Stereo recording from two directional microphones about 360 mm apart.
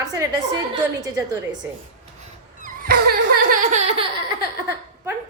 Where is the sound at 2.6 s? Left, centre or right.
Right.